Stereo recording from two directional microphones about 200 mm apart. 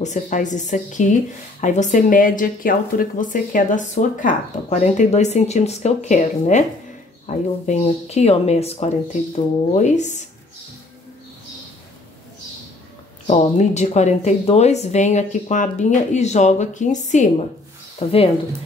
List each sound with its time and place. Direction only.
0.0 s speech: 35° left (ahead or behind)
13.3 s speech: 35° left (ahead or behind)